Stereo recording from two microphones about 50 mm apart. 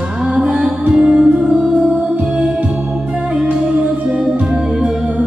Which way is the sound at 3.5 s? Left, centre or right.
Right.